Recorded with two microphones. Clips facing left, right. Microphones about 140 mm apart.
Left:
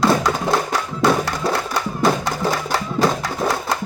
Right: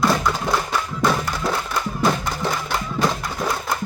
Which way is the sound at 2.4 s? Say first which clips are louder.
Left 3 dB; 35° left (ahead or behind).